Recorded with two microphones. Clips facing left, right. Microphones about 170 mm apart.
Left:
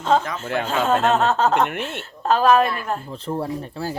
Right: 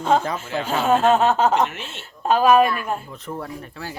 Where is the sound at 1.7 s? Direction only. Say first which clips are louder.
Left 8 dB; 55° left (ahead or behind).